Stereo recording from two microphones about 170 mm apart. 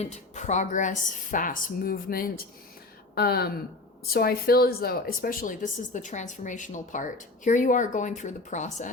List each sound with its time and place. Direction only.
0.0 s speech: 45° left (ahead or behind)